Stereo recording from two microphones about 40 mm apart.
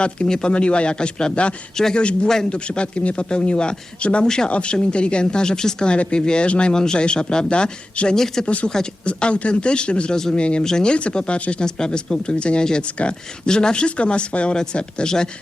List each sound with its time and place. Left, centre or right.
0.0 s speech: left
1.7 s speech: centre
2.5 s speech: left
8.1 s speech: centre
8.4 s speech: left
11.6 s speech: left